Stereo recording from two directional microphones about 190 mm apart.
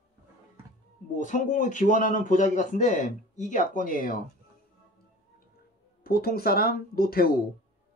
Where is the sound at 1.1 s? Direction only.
40° left (ahead or behind).